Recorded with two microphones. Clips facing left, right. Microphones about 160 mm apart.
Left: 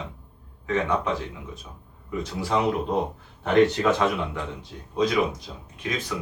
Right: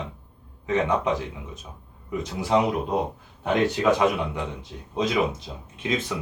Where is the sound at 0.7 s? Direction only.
20° right (ahead or behind).